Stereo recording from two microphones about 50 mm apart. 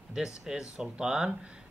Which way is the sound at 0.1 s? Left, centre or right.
Centre.